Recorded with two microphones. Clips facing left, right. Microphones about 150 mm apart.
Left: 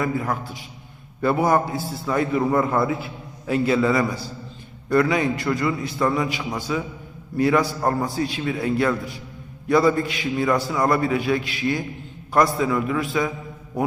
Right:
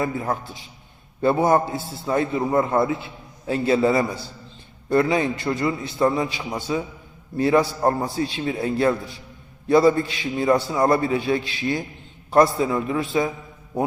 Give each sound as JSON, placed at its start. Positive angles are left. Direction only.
{"t": 0.0, "sound": "a man's voice", "side_deg": -25}